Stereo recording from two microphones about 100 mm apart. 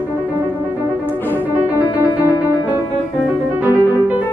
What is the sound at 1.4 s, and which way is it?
Music, 15° right (ahead or behind).